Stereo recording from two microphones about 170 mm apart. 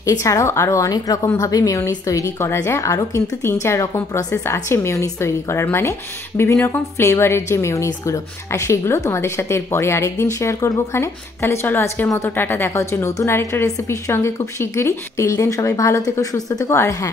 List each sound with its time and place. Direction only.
0.0 s a woman's voice: 20° left (ahead or behind)